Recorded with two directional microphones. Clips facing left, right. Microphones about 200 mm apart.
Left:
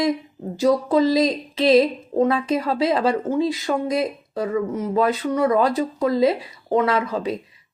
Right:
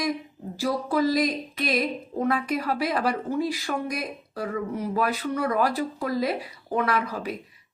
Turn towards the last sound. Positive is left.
turn(degrees=25)  # may be behind; listen again after turning